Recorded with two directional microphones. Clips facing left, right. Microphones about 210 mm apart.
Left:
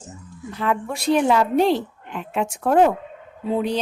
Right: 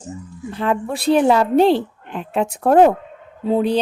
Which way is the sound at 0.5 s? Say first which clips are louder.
Right 3 dB; 30° right (ahead or behind).